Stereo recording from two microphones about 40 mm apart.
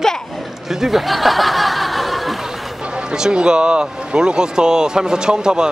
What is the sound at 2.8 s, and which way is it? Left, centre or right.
Speech, right.